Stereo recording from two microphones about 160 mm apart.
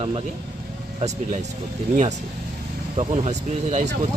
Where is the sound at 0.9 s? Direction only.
45° right (ahead or behind).